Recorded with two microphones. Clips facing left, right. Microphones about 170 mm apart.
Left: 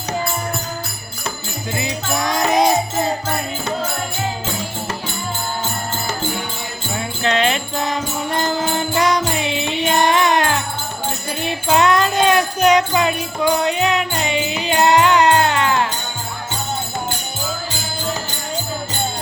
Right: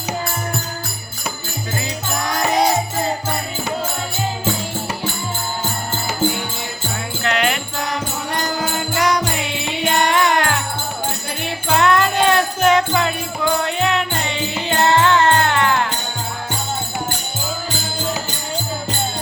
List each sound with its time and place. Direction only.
1.7 s music: 20° left (ahead or behind)
7.2 s music: 25° left (ahead or behind)
9.0 s music: 25° left (ahead or behind)
11.7 s music: 20° left (ahead or behind)